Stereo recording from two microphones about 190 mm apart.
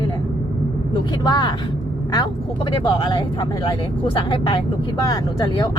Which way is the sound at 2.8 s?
20° left (ahead or behind).